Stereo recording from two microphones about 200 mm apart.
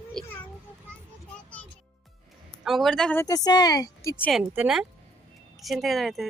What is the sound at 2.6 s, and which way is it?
A woman's voice, centre (ahead or behind).